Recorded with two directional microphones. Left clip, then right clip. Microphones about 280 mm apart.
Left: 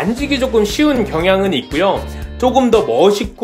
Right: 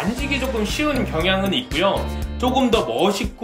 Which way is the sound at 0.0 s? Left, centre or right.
Centre.